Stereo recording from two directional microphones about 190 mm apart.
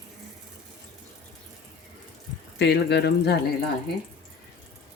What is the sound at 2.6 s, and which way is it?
Speech, 60° left (ahead or behind).